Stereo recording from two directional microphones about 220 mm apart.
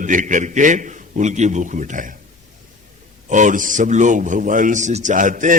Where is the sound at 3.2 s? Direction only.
35° right (ahead or behind).